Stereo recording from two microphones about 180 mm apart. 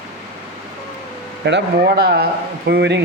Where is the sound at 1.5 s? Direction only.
70° right (ahead or behind).